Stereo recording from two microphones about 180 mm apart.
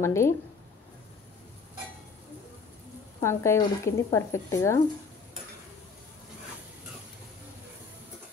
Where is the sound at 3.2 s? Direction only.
15° left (ahead or behind).